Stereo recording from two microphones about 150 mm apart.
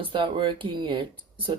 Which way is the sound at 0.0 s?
35° right (ahead or behind).